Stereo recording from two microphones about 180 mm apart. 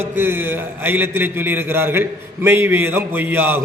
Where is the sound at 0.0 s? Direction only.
10° right (ahead or behind).